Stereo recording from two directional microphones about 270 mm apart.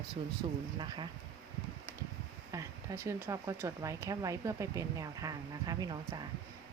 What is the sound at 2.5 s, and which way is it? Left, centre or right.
Speech, centre.